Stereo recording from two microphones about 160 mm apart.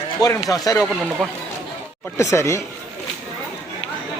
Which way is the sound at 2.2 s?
20° left (ahead or behind).